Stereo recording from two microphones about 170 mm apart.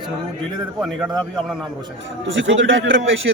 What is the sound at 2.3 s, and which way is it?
Speech, 90° right.